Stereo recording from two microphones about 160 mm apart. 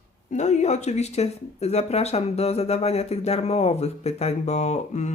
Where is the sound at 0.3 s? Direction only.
45° left (ahead or behind).